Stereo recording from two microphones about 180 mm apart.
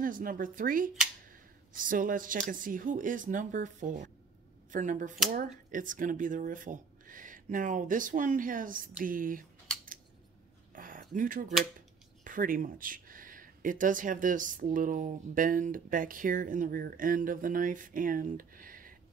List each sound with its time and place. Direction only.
0.0 s speech: 50° right (ahead or behind)
10.7 s a sound: 50° right (ahead or behind)
12.3 s speech: 50° right (ahead or behind)